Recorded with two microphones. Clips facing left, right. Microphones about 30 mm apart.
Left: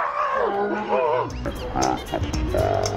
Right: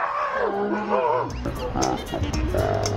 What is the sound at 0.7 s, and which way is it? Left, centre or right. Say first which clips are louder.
Music: even; left.